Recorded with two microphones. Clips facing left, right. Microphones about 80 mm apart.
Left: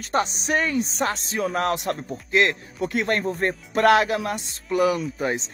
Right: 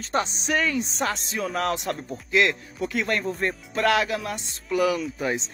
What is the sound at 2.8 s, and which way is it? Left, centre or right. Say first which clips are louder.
Speech: left 2 dB; left.